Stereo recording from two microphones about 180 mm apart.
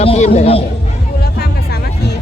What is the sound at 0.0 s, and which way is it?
Chatter, 35° left (ahead or behind).